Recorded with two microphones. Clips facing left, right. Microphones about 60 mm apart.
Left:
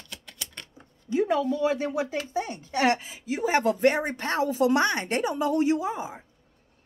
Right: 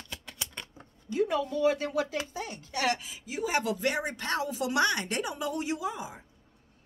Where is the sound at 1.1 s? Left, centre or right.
Left.